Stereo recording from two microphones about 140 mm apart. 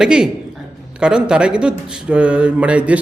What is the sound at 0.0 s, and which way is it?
A man's voice, 5° right (ahead or behind).